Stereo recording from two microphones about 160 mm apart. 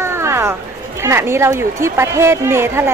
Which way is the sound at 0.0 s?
15° right (ahead or behind).